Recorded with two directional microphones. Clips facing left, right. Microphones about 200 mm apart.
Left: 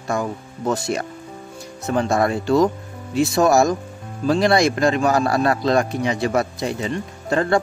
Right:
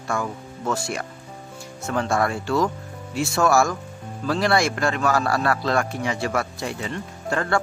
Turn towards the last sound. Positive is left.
turn(degrees=20)  # may be behind; listen again after turning